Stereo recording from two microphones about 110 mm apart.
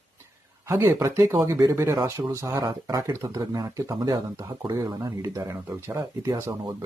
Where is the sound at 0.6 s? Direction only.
25° right (ahead or behind).